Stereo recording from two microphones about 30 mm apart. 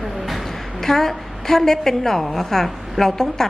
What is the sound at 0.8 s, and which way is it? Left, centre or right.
A woman's voice, centre.